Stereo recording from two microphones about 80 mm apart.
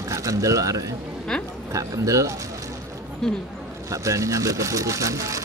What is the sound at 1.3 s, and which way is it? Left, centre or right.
Speech, centre.